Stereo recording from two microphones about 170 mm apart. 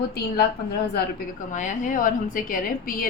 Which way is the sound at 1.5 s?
50° left (ahead or behind).